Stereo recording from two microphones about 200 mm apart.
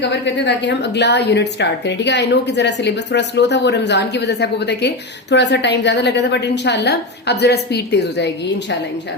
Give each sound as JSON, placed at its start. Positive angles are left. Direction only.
{"t": 0.0, "sound": "a woman's voice", "side_deg": 60}